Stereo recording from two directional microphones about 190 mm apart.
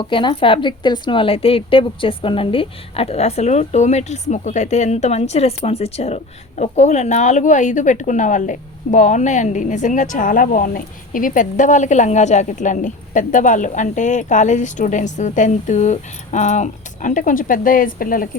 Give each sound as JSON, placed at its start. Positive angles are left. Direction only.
{"t": 0.0, "sound": "a woman's voice", "side_deg": 25}